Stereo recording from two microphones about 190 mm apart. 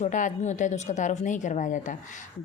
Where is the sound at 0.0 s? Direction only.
40° left (ahead or behind).